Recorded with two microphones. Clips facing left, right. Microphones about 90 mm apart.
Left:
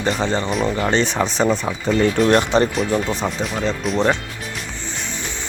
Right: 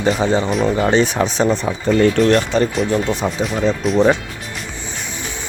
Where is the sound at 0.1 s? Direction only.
10° right (ahead or behind).